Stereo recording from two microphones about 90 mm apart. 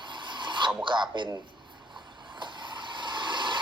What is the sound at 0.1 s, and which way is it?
Filing, 60° right (ahead or behind).